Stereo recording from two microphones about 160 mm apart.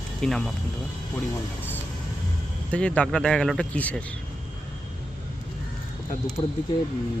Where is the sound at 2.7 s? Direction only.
5° left (ahead or behind).